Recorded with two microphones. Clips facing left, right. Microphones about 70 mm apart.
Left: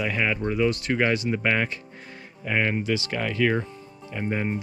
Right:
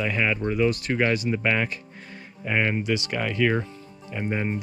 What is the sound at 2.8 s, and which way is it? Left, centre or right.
Speech, right.